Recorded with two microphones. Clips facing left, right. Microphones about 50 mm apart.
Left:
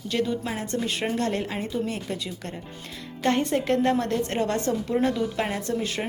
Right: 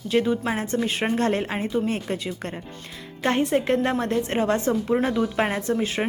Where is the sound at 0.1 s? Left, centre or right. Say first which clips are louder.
Right 5 dB; right.